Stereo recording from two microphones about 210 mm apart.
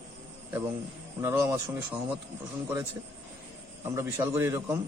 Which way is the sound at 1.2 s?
15° right (ahead or behind).